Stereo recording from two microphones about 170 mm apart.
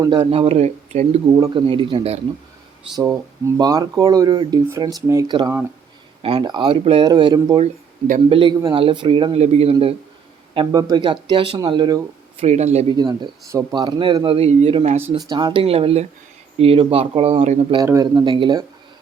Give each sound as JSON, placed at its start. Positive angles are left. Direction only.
{"t": 0.0, "sound": "speech", "side_deg": -25}
{"t": 2.9, "sound": "speech", "side_deg": -20}
{"t": 7.6, "sound": "speech", "side_deg": -50}
{"t": 8.3, "sound": "speech", "side_deg": -30}
{"t": 12.4, "sound": "speech", "side_deg": -40}
{"t": 13.0, "sound": "speech", "side_deg": -20}
{"t": 14.3, "sound": "speech", "side_deg": -35}
{"t": 15.3, "sound": "speech", "side_deg": -25}
{"t": 17.8, "sound": "speech", "side_deg": -20}